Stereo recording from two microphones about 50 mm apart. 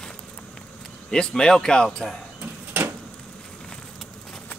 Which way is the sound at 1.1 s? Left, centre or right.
Centre.